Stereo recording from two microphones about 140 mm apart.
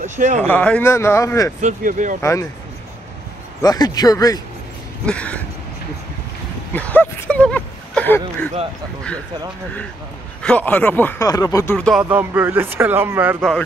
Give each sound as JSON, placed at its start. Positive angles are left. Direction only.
{"t": 0.0, "sound": "speech", "side_deg": -60}
{"t": 0.4, "sound": "speech", "side_deg": 10}
{"t": 1.6, "sound": "speech", "side_deg": -70}
{"t": 3.6, "sound": "speech", "side_deg": 30}
{"t": 5.0, "sound": "speech", "side_deg": 10}
{"t": 6.7, "sound": "speech", "side_deg": 10}
{"t": 10.4, "sound": "speech", "side_deg": 10}
{"t": 11.2, "sound": "speech", "side_deg": 25}
{"t": 11.7, "sound": "speech", "side_deg": 5}
{"t": 12.0, "sound": "speech", "side_deg": -15}